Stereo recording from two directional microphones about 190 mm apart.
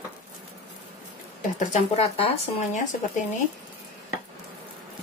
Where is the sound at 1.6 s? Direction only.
35° left (ahead or behind).